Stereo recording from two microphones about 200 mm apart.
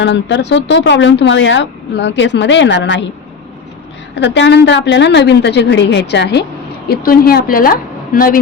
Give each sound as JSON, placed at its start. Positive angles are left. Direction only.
{"t": 0.0, "sound": "speech", "side_deg": 65}
{"t": 4.1, "sound": "a woman's voice", "side_deg": 60}